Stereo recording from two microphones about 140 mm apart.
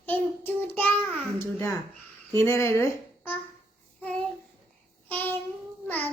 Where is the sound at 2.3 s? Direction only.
20° left (ahead or behind).